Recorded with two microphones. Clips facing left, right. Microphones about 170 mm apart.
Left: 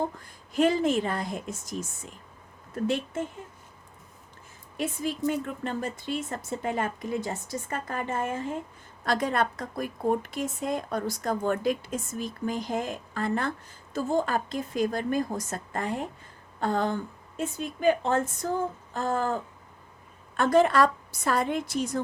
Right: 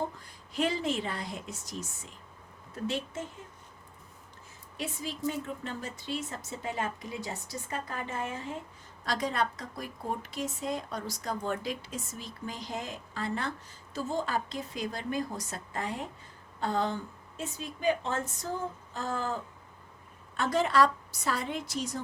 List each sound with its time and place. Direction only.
0.2 s speech: 50° left (ahead or behind)
4.8 s speech: 55° left (ahead or behind)